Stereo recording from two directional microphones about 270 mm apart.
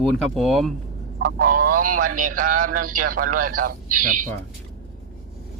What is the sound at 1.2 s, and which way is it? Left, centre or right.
Speech, right.